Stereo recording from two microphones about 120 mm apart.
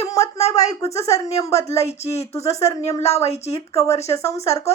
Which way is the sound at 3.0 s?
60° left (ahead or behind).